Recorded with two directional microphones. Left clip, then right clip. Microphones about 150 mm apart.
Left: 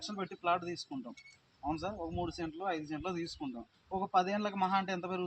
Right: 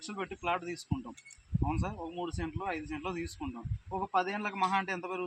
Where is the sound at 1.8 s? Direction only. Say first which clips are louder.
Even; 15° left (ahead or behind).